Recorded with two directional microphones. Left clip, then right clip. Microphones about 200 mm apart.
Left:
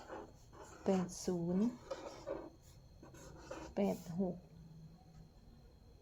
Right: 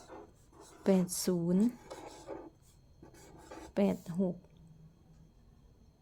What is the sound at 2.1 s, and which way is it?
Filing, 30° right (ahead or behind).